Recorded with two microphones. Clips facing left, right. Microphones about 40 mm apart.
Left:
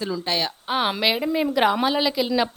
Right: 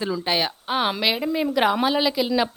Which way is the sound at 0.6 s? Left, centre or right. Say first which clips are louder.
Left 3 dB; centre.